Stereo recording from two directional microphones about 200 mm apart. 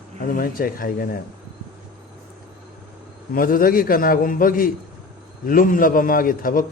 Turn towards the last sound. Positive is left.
turn(degrees=45)  # may be behind; listen again after turning